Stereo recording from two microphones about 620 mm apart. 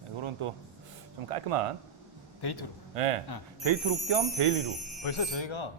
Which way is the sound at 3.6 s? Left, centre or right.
Right.